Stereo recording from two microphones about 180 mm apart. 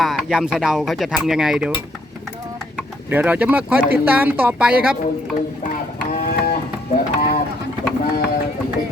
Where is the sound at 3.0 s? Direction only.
10° right (ahead or behind).